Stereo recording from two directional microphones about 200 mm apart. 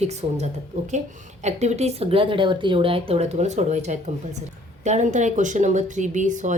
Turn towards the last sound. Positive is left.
turn(degrees=-40)  # may be behind; listen again after turning